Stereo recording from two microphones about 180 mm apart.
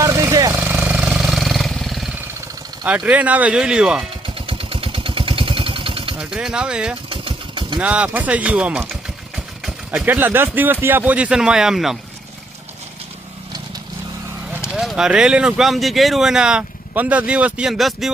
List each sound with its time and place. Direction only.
0.0 s vehicle: 15° right (ahead or behind); by 2.0 s centre (ahead or behind)
2.8 s speech: 5° right (ahead or behind)
4.4 s vehicle: 30° right (ahead or behind)
6.1 s speech: 5° right (ahead or behind)
7.1 s engine: 30° right (ahead or behind)
7.8 s speech: 5° right (ahead or behind)
14.7 s speech: centre (ahead or behind)